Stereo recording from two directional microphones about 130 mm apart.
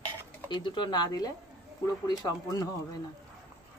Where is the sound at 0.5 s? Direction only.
35° left (ahead or behind).